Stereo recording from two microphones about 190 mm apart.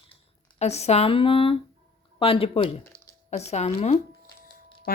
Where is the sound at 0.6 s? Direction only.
35° left (ahead or behind).